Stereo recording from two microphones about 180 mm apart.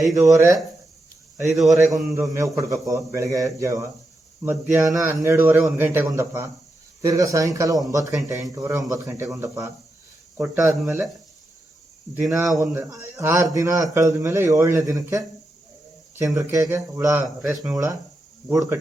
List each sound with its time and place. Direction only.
0.2 s a man's voice: 15° right (ahead or behind)
1.5 s speech: centre (ahead or behind)
1.7 s a man's voice: 20° right (ahead or behind)
12.1 s speech: 5° right (ahead or behind)
12.7 s a man's voice: 15° right (ahead or behind)
17.2 s speech: centre (ahead or behind)